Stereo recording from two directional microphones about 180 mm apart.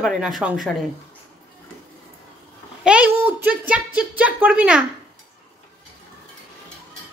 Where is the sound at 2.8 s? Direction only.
5° right (ahead or behind).